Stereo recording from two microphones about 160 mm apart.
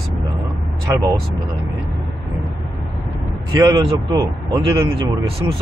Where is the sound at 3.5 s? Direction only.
20° right (ahead or behind).